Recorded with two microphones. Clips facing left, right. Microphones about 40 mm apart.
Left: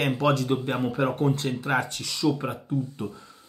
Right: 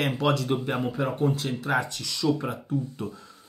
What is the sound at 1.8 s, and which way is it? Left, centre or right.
Speech, left.